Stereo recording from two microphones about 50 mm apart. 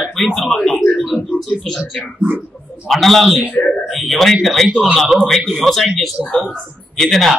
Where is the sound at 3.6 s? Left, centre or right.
Left.